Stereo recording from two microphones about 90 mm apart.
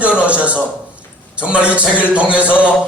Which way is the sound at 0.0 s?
15° right (ahead or behind).